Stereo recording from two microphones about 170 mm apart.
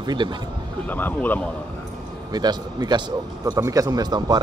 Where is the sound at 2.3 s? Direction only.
25° right (ahead or behind).